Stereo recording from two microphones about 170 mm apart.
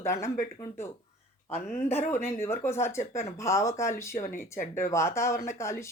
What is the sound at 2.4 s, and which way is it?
Speech, 15° left (ahead or behind).